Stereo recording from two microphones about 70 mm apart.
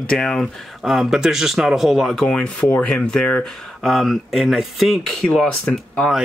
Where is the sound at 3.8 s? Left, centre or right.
Centre.